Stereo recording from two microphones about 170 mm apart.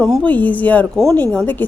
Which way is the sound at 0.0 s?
5° left (ahead or behind).